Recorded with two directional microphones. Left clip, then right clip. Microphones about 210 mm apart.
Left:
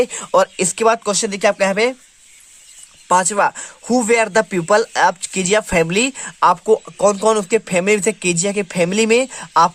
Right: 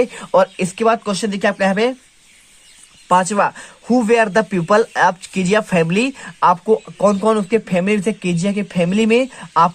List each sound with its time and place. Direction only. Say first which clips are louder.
0.0 s speech: even; 20° left (ahead or behind)
3.1 s speech: even; 20° left (ahead or behind)